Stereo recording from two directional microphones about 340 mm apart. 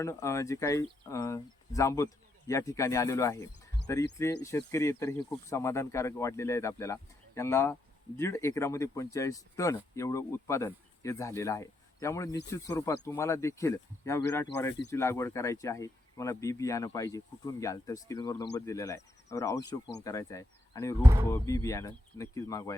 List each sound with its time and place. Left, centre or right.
0.0 s speech: centre
21.0 s speech: centre
21.3 s speech: centre